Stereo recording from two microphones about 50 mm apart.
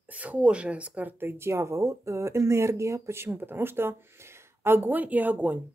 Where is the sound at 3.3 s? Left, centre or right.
Right.